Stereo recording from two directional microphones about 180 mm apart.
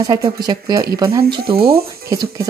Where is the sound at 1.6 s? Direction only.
60° right (ahead or behind).